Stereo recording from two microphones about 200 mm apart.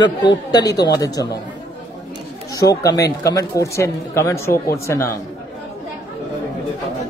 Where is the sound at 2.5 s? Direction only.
15° left (ahead or behind).